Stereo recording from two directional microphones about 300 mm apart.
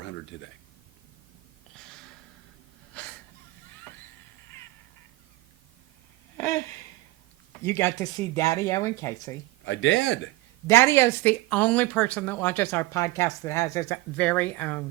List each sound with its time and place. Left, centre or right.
0.0 s a sound: left
2.9 s wheeze: centre
6.3 s a sound: centre
7.6 s speech: centre
9.6 s a man's voice: left
10.7 s speech: centre